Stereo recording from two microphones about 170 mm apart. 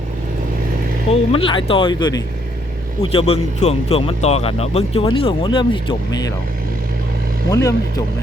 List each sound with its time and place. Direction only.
1.1 s speech: 35° left (ahead or behind)
7.5 s speech: 20° left (ahead or behind)